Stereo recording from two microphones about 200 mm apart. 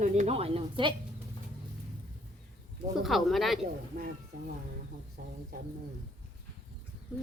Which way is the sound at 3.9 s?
40° right (ahead or behind).